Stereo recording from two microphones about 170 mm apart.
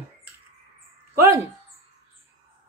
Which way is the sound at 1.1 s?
15° right (ahead or behind).